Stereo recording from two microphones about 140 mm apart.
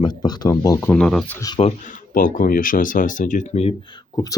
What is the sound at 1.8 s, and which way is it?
Speech, 70° left (ahead or behind).